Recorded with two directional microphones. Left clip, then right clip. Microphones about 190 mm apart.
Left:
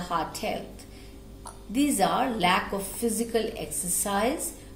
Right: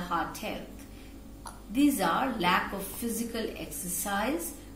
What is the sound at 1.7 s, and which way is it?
A woman's voice, 55° left (ahead or behind).